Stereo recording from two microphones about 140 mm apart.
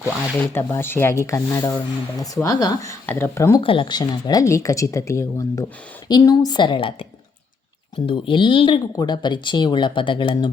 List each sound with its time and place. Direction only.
0.0 s speech: 15° left (ahead or behind)
3.6 s speech: 40° left (ahead or behind)
8.0 s speech: 40° left (ahead or behind)